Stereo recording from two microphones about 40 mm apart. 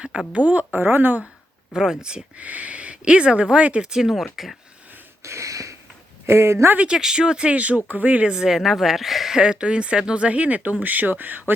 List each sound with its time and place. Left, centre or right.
0.3 s speech: right
1.7 s speech: centre
2.3 s speech: right
3.8 s speech: centre
4.4 s speech: centre
6.2 s speech: right
6.9 s speech: centre; by 8.3 s right
8.3 s speech: centre
9.3 s speech: right
10.2 s speech: right